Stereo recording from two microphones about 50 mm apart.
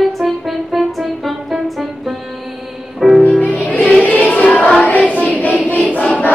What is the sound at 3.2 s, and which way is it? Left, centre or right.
Music, right.